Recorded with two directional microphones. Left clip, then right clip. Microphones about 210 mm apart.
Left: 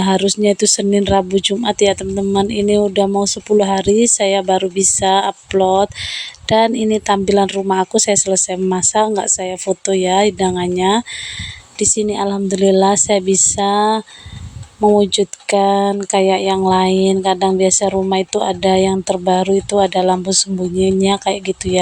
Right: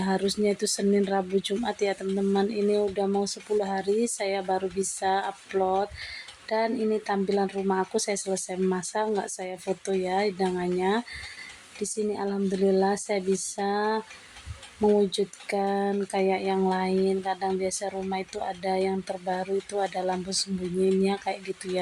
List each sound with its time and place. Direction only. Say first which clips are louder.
0.0 s speech: left 12 dB; 30° left (ahead or behind)